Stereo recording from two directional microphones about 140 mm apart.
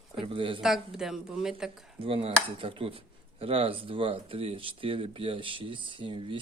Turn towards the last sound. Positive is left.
turn(degrees=-40)  # may be behind; listen again after turning